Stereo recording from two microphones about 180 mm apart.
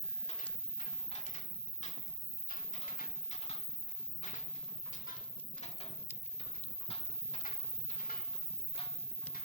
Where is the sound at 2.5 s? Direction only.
45° left (ahead or behind).